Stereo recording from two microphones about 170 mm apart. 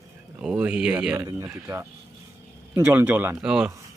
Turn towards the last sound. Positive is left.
turn(degrees=-5)  # may be behind; listen again after turning